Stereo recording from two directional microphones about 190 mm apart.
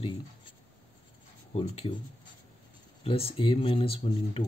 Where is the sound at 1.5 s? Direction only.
30° left (ahead or behind).